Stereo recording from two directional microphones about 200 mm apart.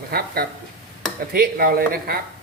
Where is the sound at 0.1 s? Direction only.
50° right (ahead or behind).